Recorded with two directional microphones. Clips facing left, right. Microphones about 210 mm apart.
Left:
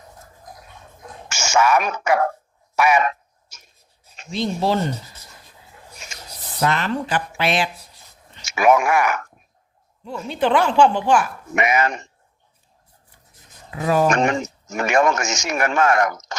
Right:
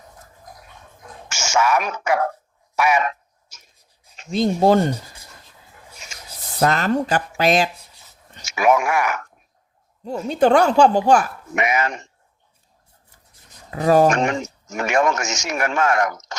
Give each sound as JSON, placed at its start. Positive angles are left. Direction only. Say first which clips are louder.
{"t": 1.3, "sound": "speech", "louder": "left 2 dB", "side_deg": 55}
{"t": 2.7, "sound": "a sound", "louder": "left 1 dB", "side_deg": 55}
{"t": 4.3, "sound": "speech", "louder": "right 5 dB", "side_deg": -45}
{"t": 6.6, "sound": "a woman's voice", "louder": "right 3 dB", "side_deg": -40}
{"t": 8.4, "sound": "speech", "louder": "left 1 dB", "side_deg": 55}
{"t": 10.0, "sound": "a woman's voice", "louder": "right 5 dB", "side_deg": -40}
{"t": 11.5, "sound": "speech", "louder": "left 2 dB", "side_deg": 55}
{"t": 13.7, "sound": "speech", "louder": "right 4 dB", "side_deg": -40}
{"t": 14.3, "sound": "speech", "louder": "left 2 dB", "side_deg": 55}